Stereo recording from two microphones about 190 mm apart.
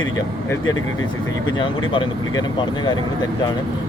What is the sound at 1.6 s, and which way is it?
Speech, 25° left (ahead or behind).